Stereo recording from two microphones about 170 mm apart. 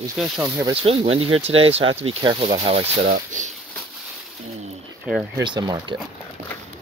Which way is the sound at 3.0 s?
50° right (ahead or behind).